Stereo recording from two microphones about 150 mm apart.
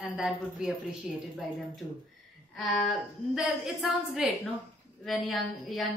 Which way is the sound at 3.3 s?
5° right (ahead or behind).